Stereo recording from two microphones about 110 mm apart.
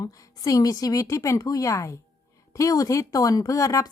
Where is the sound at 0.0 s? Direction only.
30° left (ahead or behind).